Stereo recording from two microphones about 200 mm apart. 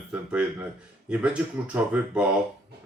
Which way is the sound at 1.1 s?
5° right (ahead or behind).